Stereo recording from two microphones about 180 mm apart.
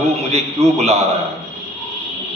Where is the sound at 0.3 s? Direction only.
35° right (ahead or behind).